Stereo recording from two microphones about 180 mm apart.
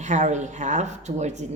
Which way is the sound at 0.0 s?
40° right (ahead or behind).